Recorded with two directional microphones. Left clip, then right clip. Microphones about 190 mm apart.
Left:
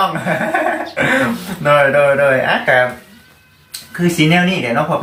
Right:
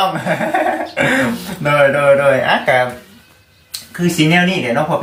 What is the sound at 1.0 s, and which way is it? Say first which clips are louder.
Speech: left 1 dB; 10° right (ahead or behind).